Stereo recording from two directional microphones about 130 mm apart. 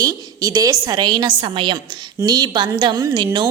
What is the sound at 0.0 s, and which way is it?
A woman's voice, 25° right (ahead or behind).